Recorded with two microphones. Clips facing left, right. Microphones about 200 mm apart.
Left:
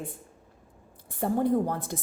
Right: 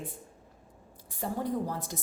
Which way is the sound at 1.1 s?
55° left (ahead or behind).